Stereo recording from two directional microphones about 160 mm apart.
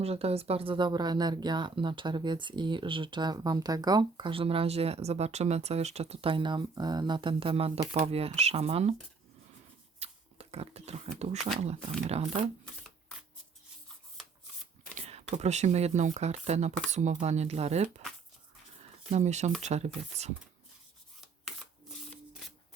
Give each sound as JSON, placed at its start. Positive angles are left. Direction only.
{"t": 0.0, "sound": "speech", "side_deg": -40}
{"t": 10.0, "sound": "a sound", "side_deg": -40}
{"t": 11.3, "sound": "speech", "side_deg": 0}
{"t": 11.6, "sound": "speech", "side_deg": -40}
{"t": 14.9, "sound": "speech", "side_deg": -45}
{"t": 18.8, "sound": "a sound", "side_deg": -45}
{"t": 19.6, "sound": "speech", "side_deg": -45}